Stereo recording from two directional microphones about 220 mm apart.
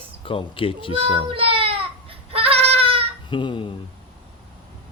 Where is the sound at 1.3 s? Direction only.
25° right (ahead or behind).